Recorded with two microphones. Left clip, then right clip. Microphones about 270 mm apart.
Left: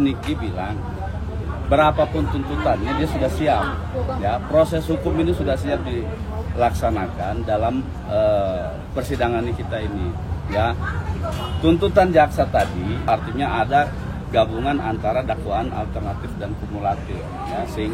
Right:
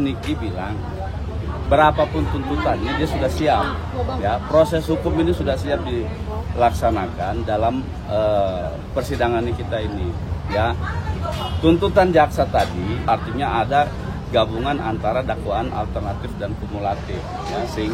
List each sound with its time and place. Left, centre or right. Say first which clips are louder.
0.0 s speech: left 1 dB; centre
1.7 s speech: right 1 dB; centre